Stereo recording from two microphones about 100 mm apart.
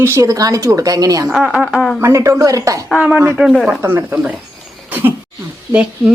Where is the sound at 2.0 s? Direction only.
30° right (ahead or behind).